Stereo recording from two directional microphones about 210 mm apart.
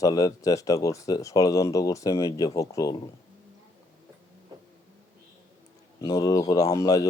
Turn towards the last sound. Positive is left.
turn(degrees=15)  # may be behind; listen again after turning